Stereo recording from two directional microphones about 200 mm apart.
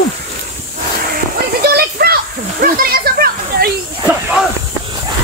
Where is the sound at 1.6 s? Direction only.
50° right (ahead or behind).